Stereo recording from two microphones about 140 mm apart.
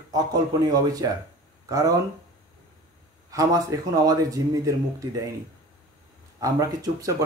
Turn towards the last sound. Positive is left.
turn(degrees=-25)  # may be behind; listen again after turning